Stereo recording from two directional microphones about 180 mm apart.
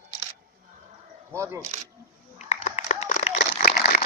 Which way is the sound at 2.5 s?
40° left (ahead or behind).